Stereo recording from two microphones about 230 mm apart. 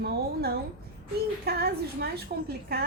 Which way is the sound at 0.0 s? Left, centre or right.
Right.